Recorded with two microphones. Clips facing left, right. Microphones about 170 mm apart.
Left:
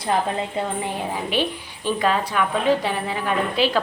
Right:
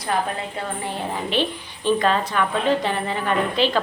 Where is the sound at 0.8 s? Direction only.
10° left (ahead or behind).